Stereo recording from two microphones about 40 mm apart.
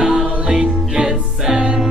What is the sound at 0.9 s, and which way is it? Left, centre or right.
Music, centre.